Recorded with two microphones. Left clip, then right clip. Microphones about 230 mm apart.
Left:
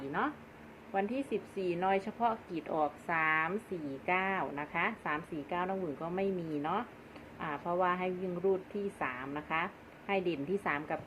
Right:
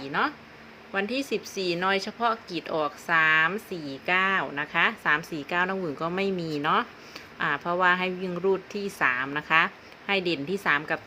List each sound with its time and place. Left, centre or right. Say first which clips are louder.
0.2 s a woman's voice: right 9 dB; right